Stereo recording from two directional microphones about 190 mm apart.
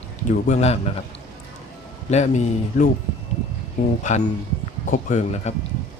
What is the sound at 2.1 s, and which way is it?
Speech, 35° left (ahead or behind).